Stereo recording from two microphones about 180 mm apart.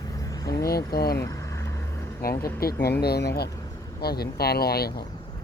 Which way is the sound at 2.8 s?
60° left (ahead or behind).